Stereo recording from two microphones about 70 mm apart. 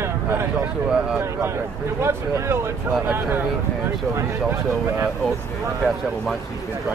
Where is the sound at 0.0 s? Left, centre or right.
Right.